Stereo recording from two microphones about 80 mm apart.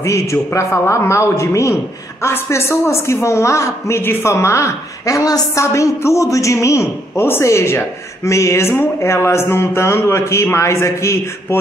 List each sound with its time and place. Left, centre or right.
0.0 s a woman's voice: left